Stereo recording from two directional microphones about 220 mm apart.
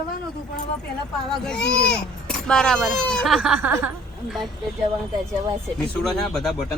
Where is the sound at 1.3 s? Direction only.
5° left (ahead or behind).